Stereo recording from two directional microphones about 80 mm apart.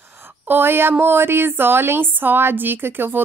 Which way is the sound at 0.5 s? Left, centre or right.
Right.